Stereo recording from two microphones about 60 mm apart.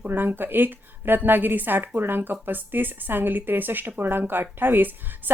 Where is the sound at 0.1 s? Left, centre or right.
Right.